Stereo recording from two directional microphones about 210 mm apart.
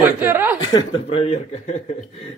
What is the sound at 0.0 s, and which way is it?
Chuckle, 10° right (ahead or behind).